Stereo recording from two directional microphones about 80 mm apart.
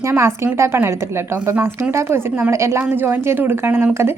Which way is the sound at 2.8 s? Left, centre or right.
Right.